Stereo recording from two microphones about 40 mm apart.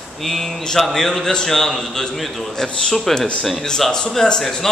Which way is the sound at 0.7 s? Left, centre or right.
Centre.